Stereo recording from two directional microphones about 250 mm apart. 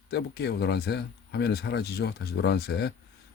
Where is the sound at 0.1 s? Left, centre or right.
Left.